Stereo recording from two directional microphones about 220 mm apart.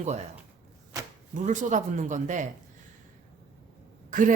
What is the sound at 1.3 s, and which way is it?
A woman's voice, 35° right (ahead or behind).